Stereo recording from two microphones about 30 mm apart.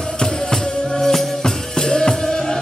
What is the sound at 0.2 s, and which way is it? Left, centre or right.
Music, centre.